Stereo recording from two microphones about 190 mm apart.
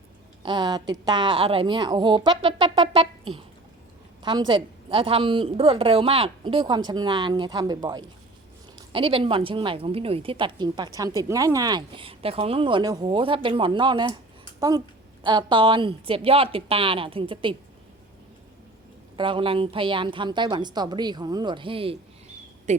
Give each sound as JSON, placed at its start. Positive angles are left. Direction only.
{"t": 0.4, "sound": "speech", "side_deg": -20}
{"t": 15.2, "sound": "speech", "side_deg": -25}
{"t": 19.1, "sound": "speech", "side_deg": -25}